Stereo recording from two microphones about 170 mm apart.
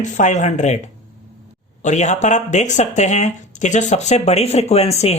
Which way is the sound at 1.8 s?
45° left (ahead or behind).